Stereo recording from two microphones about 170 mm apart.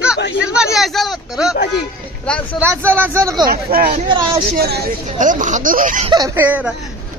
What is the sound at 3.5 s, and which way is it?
Speech, 60° right (ahead or behind).